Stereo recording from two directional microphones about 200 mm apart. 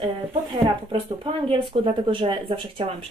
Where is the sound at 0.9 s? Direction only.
25° right (ahead or behind).